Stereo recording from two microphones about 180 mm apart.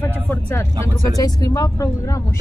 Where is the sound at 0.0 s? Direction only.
15° left (ahead or behind).